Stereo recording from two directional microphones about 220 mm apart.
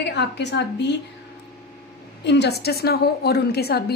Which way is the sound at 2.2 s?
50° left (ahead or behind).